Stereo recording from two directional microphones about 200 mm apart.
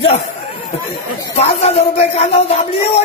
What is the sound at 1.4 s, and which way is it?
Speech, 30° left (ahead or behind).